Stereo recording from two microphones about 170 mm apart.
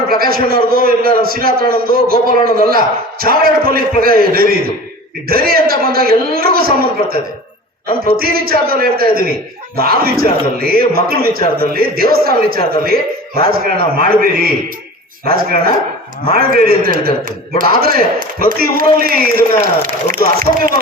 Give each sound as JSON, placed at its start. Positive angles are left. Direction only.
{"t": 0.2, "sound": "a man's voice", "side_deg": -60}